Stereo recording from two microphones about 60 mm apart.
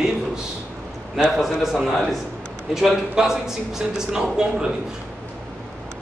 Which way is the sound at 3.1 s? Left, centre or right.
Centre.